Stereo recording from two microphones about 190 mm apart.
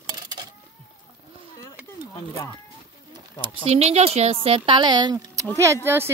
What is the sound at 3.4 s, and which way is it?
Speech, 30° right (ahead or behind).